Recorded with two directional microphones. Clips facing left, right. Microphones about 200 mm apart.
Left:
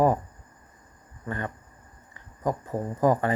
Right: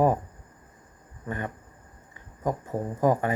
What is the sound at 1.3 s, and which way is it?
Speech, 15° right (ahead or behind).